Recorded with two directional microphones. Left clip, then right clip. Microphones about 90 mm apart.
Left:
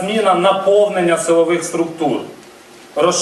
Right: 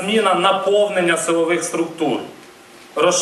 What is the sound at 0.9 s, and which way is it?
Speech, 35° right (ahead or behind).